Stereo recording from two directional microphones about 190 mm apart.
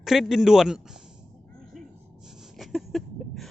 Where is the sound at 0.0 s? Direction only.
Centre (ahead or behind).